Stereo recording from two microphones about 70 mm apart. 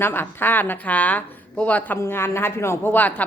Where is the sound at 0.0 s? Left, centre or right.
Left.